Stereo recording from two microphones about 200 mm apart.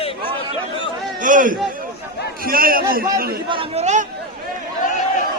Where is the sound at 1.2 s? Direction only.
40° right (ahead or behind).